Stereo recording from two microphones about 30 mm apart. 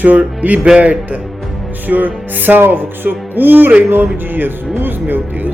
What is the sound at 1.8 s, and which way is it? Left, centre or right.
Speech, right.